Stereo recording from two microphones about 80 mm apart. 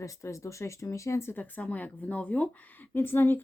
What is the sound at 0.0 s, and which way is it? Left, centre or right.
Speech, left.